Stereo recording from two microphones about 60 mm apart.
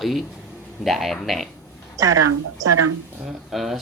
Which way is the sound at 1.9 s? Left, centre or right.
Right.